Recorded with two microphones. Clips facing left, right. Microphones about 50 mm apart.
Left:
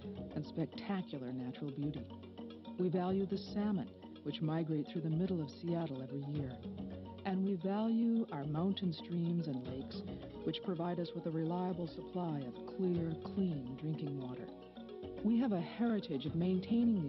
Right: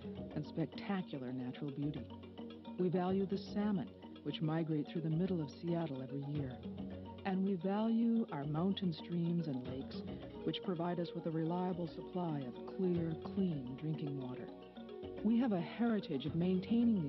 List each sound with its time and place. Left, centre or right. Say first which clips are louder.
0.4 s speech: even; right